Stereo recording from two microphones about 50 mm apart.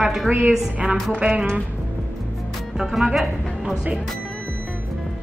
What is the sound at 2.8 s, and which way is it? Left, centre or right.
Speech, centre.